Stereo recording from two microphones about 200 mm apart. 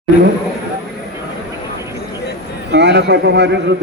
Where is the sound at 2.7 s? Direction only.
60° right (ahead or behind).